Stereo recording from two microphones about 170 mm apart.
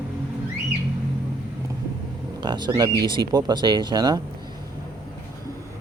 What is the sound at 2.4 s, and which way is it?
Speech, 25° right (ahead or behind).